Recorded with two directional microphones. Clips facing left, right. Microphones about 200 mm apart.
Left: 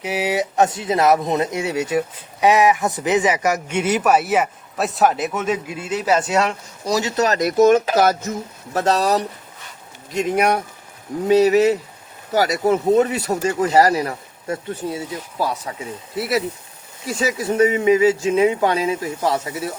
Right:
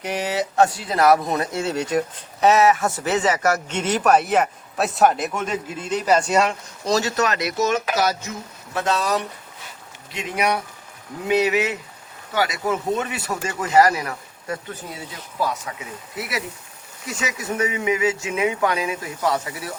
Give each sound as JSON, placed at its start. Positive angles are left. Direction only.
{"t": 0.0, "sound": "speech", "side_deg": 5}
{"t": 7.2, "sound": "speech", "side_deg": 40}
{"t": 8.7, "sound": "speech", "side_deg": 40}
{"t": 11.3, "sound": "speech", "side_deg": 40}